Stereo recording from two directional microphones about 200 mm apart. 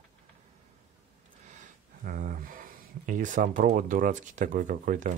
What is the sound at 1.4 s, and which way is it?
Speech, 40° right (ahead or behind).